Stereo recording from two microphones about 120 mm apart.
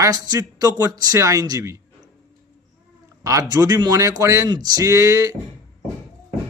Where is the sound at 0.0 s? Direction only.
30° right (ahead or behind).